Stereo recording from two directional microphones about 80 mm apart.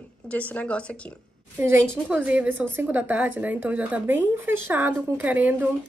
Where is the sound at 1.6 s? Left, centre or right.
Right.